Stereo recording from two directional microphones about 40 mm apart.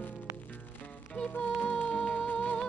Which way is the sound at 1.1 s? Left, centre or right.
Left.